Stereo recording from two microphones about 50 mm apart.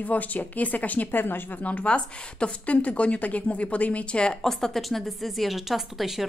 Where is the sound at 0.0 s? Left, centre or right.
Left.